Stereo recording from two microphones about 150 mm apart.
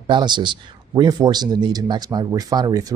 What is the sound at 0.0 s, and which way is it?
Speech, 30° right (ahead or behind).